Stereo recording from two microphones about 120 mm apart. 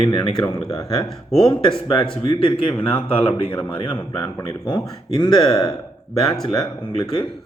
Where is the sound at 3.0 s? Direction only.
50° left (ahead or behind).